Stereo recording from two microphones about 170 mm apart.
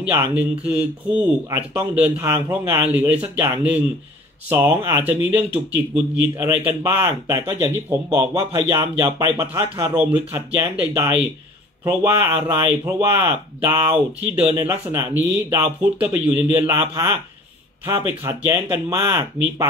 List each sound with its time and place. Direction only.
0.1 s speech: 10° right (ahead or behind)